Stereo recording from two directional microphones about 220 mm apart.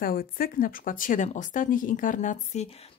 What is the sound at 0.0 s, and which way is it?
Speech, 40° left (ahead or behind).